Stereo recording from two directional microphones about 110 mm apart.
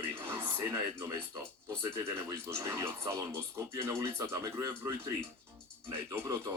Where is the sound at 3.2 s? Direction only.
30° right (ahead or behind).